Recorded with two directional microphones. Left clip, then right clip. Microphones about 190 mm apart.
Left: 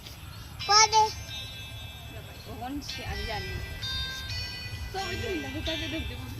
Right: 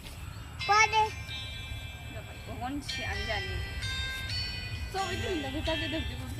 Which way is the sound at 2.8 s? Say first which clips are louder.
Right 2 dB; 35° right (ahead or behind).